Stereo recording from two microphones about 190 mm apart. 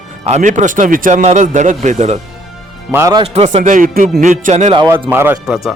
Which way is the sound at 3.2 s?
35° right (ahead or behind).